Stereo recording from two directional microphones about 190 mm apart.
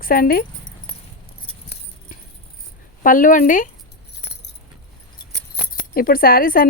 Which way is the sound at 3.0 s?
45° left (ahead or behind).